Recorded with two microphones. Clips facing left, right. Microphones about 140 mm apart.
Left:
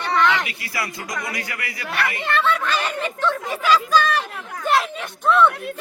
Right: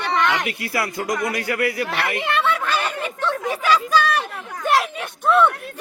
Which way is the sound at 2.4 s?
10° right (ahead or behind).